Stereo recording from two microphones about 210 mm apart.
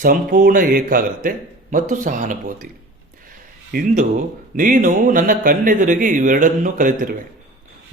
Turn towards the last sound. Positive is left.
turn(degrees=-40)  # may be behind; listen again after turning